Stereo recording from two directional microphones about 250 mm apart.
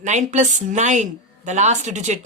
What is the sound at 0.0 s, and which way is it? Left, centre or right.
Speech, right.